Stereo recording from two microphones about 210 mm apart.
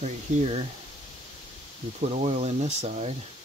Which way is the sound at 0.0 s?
30° right (ahead or behind).